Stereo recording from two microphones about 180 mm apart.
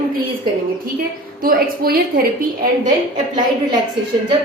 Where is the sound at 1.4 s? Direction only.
55° right (ahead or behind).